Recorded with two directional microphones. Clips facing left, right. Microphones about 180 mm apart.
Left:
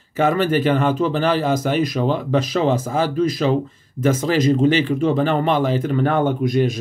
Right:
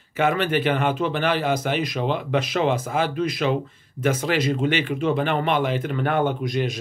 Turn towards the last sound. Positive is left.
turn(degrees=45)  # may be behind; listen again after turning